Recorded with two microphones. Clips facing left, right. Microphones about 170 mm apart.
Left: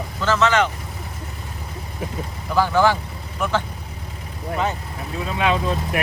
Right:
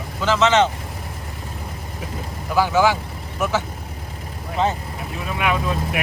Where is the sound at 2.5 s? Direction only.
10° right (ahead or behind).